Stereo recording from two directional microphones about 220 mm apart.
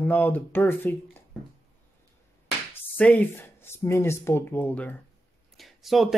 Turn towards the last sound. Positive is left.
turn(degrees=0)  # may be behind; listen again after turning